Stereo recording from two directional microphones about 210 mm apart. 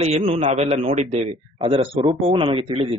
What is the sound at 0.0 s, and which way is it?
Speech, 30° right (ahead or behind).